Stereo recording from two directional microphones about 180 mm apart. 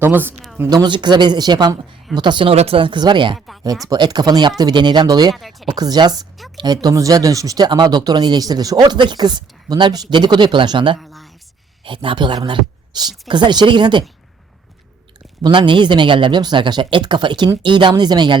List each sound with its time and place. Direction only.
0.0 s speech: 10° right (ahead or behind)
3.3 s speech: centre (ahead or behind)
3.8 s speech: 25° right (ahead or behind)
5.3 s speech: centre (ahead or behind)
5.7 s speech: 20° right (ahead or behind)
10.9 s a sound: centre (ahead or behind)
11.9 s speech: 25° right (ahead or behind)
15.4 s speech: 25° right (ahead or behind)